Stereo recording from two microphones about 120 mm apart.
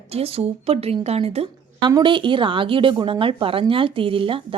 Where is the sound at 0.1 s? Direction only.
55° right (ahead or behind).